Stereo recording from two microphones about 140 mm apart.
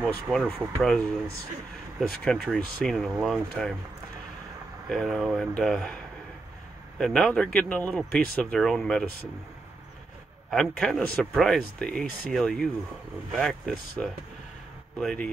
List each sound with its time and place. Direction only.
0.0 s speech: centre (ahead or behind)
2.0 s speech: centre (ahead or behind)
4.8 s speech: centre (ahead or behind)
7.0 s speech: 5° left (ahead or behind)
10.5 s speech: 5° left (ahead or behind)